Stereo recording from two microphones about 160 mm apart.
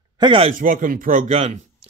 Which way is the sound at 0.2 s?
35° right (ahead or behind).